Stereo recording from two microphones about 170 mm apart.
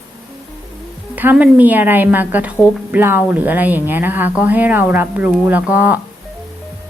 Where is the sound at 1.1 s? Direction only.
10° right (ahead or behind).